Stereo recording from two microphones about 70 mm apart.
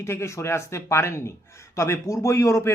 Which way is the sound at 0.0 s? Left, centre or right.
Left.